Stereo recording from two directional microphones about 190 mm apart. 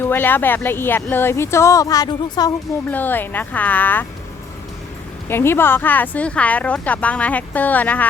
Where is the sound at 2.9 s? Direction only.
10° left (ahead or behind).